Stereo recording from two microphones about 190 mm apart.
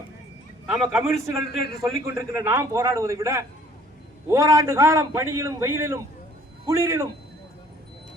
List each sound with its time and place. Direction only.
0.7 s a man's voice: centre (ahead or behind)
1.8 s a man's voice: 15° right (ahead or behind)